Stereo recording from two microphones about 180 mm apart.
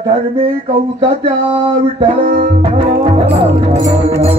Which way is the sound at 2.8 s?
30° right (ahead or behind).